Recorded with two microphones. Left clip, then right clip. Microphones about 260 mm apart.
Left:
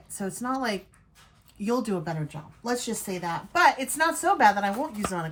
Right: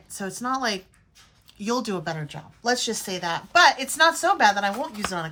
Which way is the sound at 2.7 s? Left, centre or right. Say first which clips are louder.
Right 5 dB; centre.